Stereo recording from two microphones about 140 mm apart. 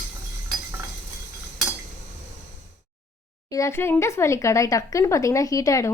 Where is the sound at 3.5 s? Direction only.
20° left (ahead or behind).